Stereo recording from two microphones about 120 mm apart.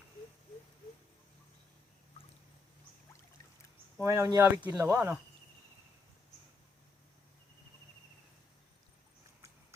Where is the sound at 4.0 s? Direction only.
20° right (ahead or behind).